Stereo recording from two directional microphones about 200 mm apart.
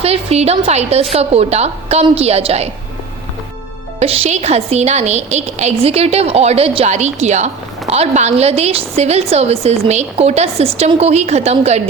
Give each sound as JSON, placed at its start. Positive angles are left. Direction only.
{"t": 0.0, "sound": "a woman's voice", "side_deg": -30}
{"t": 4.0, "sound": "a woman's voice", "side_deg": -30}